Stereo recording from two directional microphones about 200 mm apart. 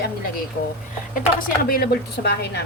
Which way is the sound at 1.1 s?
45° left (ahead or behind).